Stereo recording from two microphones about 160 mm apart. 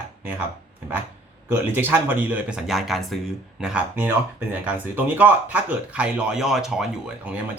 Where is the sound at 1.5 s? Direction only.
10° right (ahead or behind).